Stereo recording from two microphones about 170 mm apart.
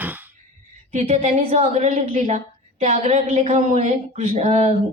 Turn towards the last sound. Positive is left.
turn(degrees=-40)  # may be behind; listen again after turning